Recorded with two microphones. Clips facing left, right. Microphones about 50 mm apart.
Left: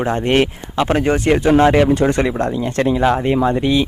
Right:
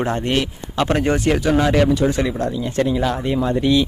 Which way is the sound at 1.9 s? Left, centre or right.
Left.